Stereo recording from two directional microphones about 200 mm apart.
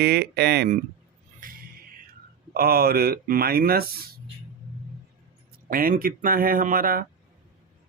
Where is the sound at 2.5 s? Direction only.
50° right (ahead or behind).